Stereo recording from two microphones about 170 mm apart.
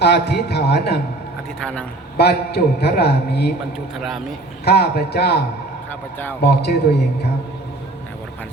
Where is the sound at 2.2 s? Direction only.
70° left (ahead or behind).